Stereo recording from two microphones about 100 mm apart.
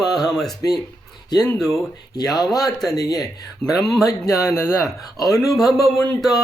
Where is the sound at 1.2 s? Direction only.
45° left (ahead or behind).